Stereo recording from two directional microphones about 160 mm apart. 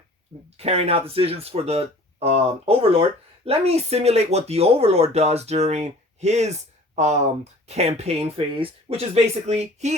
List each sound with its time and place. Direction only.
0.5 s speech: 40° right (ahead or behind)